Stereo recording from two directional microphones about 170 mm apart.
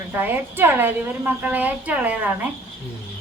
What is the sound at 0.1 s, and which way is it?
A woman's voice, 10° right (ahead or behind).